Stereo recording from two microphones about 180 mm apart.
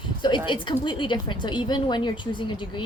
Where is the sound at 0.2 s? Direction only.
25° left (ahead or behind).